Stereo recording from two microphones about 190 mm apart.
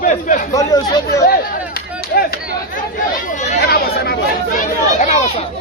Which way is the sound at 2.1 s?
55° left (ahead or behind).